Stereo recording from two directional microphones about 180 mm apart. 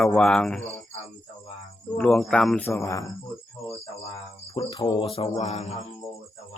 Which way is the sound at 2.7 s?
15° left (ahead or behind).